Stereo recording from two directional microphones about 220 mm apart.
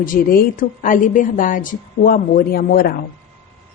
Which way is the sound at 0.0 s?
40° left (ahead or behind).